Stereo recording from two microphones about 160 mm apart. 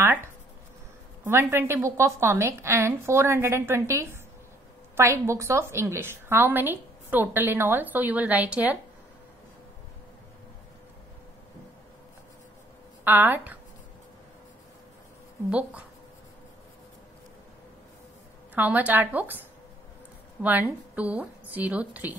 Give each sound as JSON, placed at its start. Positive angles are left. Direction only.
{"t": 1.2, "sound": "a woman's voice", "side_deg": -15}
{"t": 13.0, "sound": "a woman's voice", "side_deg": -10}
{"t": 18.5, "sound": "a woman's voice", "side_deg": -10}
{"t": 20.4, "sound": "a woman's voice", "side_deg": -10}